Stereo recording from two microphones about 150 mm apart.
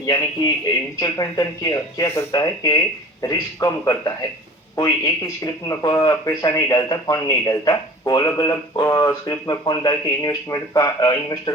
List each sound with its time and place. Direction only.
0.0 s speech: 25° left (ahead or behind)